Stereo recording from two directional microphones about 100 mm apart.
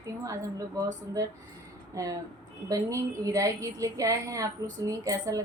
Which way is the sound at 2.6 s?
35° right (ahead or behind).